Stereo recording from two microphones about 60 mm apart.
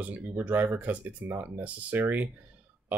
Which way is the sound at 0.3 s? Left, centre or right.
Right.